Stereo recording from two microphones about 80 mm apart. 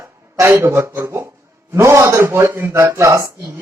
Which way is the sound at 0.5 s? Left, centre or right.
Right.